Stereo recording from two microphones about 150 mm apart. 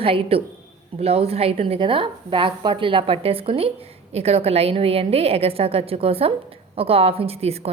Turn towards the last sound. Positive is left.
turn(degrees=-45)  # may be behind; listen again after turning